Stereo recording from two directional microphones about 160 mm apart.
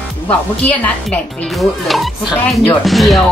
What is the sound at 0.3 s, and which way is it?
Speech, 10° left (ahead or behind).